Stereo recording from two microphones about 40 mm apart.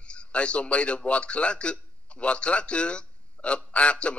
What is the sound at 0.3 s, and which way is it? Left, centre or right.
A man's voice, left.